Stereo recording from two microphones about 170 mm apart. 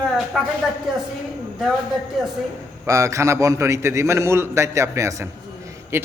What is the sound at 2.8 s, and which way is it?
A man's voice, 20° right (ahead or behind).